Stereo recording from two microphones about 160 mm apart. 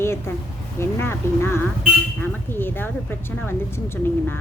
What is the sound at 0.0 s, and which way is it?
Speech, 15° left (ahead or behind).